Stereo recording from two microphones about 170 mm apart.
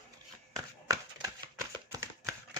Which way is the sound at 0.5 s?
20° right (ahead or behind).